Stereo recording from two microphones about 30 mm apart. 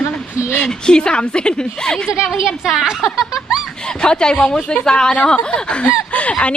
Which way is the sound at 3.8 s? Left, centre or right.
Left.